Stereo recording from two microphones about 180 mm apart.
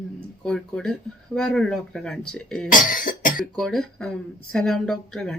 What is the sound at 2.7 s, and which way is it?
Cough, 50° left (ahead or behind).